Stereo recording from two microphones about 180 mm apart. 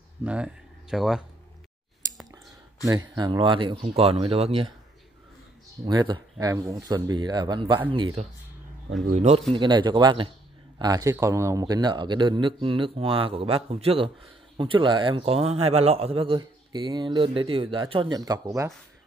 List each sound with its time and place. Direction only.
0.2 s speech: 5° right (ahead or behind)
2.8 s speech: 20° right (ahead or behind)
5.9 s speech: 25° right (ahead or behind)
9.1 s speech: 40° right (ahead or behind)
9.5 s speech: 25° right (ahead or behind)